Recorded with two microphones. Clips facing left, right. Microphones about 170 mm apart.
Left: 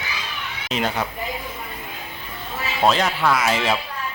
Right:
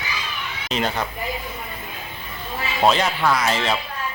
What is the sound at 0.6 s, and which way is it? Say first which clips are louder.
Speech: even; 5° left (ahead or behind).